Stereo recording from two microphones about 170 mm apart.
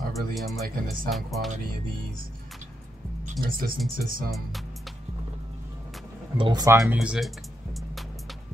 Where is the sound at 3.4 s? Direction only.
60° right (ahead or behind).